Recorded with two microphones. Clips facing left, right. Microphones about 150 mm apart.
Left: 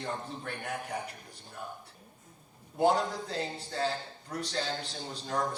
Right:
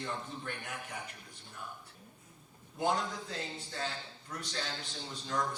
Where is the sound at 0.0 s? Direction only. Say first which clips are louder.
Left 3 dB; 35° left (ahead or behind).